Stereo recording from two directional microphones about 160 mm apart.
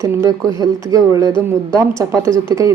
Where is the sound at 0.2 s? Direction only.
20° right (ahead or behind).